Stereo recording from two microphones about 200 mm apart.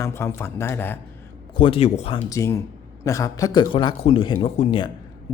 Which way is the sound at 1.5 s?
25° left (ahead or behind).